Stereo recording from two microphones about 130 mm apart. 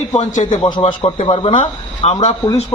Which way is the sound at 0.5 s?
35° left (ahead or behind).